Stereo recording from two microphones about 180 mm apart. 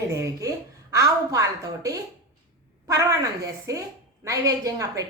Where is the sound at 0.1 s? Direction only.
20° right (ahead or behind).